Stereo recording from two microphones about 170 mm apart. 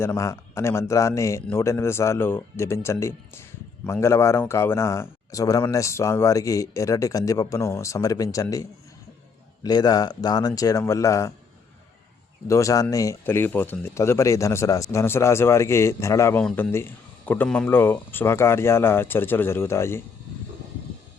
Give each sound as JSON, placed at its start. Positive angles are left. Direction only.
{"t": 0.0, "sound": "speech", "side_deg": 15}
{"t": 9.6, "sound": "speech", "side_deg": 20}
{"t": 12.5, "sound": "speech", "side_deg": 20}